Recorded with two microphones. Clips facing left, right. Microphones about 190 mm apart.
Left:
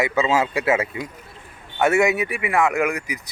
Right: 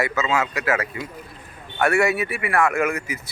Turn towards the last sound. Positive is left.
turn(degrees=15)  # may be behind; listen again after turning